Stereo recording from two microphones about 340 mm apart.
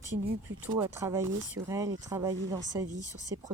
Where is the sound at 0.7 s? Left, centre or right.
Centre.